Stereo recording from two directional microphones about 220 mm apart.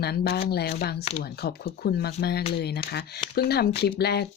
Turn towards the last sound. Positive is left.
turn(degrees=45)  # may be behind; listen again after turning